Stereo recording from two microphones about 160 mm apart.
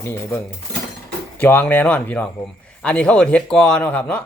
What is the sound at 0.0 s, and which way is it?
Speech, 10° left (ahead or behind).